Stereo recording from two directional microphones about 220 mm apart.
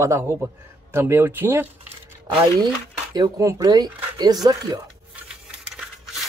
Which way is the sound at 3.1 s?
15° right (ahead or behind).